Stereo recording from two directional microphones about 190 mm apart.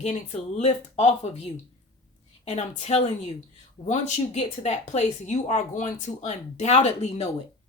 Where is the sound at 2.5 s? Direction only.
35° left (ahead or behind).